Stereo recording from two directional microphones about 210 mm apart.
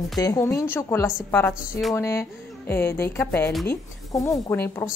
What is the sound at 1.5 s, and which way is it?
Speech, centre (ahead or behind).